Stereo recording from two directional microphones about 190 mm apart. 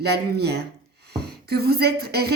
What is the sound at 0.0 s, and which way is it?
A woman's voice, 60° right (ahead or behind).